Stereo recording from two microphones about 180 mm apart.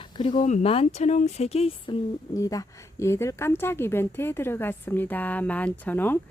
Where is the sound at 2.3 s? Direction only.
20° left (ahead or behind).